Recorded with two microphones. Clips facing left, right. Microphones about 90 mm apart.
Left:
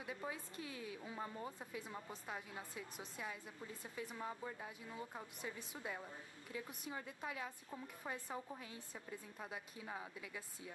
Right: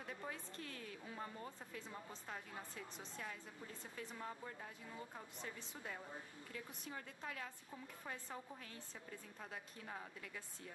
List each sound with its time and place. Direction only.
0.0 s a woman's voice: 10° left (ahead or behind)
9.4 s a woman's voice: 10° left (ahead or behind)